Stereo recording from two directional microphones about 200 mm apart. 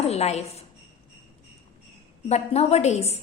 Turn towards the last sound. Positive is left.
turn(degrees=35)  # may be behind; listen again after turning